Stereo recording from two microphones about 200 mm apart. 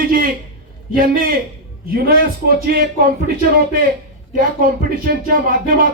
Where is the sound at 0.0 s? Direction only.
45° right (ahead or behind).